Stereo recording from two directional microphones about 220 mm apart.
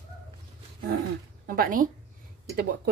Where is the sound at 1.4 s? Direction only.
40° right (ahead or behind).